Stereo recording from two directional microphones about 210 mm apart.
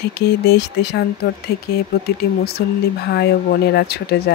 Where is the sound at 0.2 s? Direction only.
50° left (ahead or behind).